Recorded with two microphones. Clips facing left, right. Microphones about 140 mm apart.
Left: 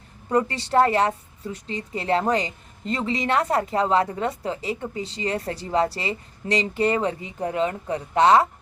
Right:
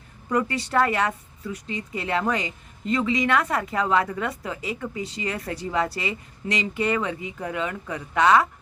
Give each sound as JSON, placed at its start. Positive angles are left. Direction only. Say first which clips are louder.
{"t": 0.3, "sound": "a woman's voice", "louder": "left 2 dB", "side_deg": 30}